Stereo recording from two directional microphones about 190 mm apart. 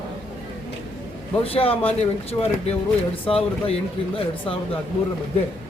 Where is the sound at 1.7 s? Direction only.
10° left (ahead or behind).